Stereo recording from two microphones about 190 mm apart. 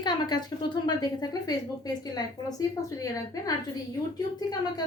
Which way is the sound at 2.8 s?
20° left (ahead or behind).